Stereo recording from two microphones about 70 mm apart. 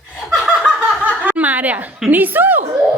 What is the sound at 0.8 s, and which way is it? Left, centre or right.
Snicker, right.